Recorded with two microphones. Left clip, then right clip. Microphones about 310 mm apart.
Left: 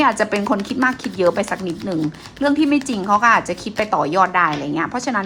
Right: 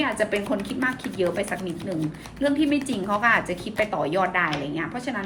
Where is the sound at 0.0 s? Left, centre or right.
Centre.